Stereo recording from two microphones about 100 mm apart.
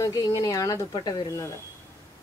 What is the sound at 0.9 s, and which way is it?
Speech, 50° left (ahead or behind).